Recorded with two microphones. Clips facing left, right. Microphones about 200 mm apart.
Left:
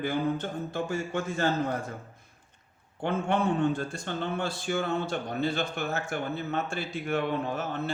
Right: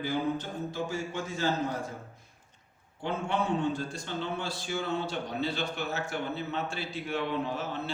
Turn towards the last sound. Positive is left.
turn(degrees=50)  # may be behind; listen again after turning